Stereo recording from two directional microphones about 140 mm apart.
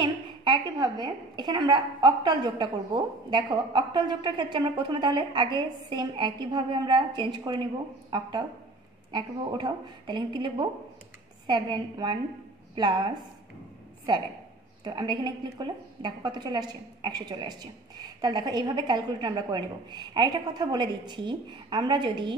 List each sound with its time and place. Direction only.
0.0 s a woman's voice: 35° right (ahead or behind)
14.8 s a woman's voice: 30° right (ahead or behind)